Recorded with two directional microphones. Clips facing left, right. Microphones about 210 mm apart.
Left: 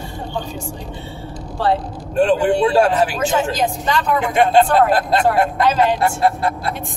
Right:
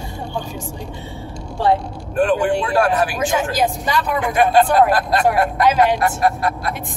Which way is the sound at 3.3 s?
10° right (ahead or behind).